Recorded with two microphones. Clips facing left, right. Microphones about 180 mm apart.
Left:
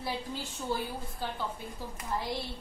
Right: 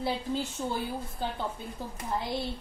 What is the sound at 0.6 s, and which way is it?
Speech, 20° right (ahead or behind).